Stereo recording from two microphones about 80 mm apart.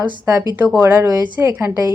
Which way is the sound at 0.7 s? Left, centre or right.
Right.